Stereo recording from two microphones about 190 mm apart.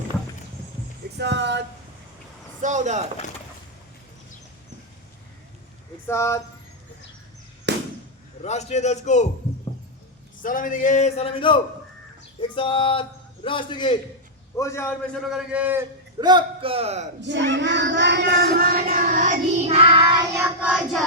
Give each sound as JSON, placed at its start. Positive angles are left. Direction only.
{"t": 1.2, "sound": "a sound", "side_deg": -70}
{"t": 2.6, "sound": "speech", "side_deg": -40}
{"t": 6.1, "sound": "a man's voice", "side_deg": 15}
{"t": 7.7, "sound": "fireworks", "side_deg": -70}
{"t": 8.4, "sound": "a man's voice", "side_deg": 35}
{"t": 10.4, "sound": "a man's voice", "side_deg": 45}
{"t": 14.5, "sound": "a man's voice", "side_deg": 15}
{"t": 15.3, "sound": "child singing", "side_deg": -5}
{"t": 16.2, "sound": "a man's voice", "side_deg": -25}
{"t": 17.2, "sound": "speech", "side_deg": -70}
{"t": 20.1, "sound": "child singing", "side_deg": -15}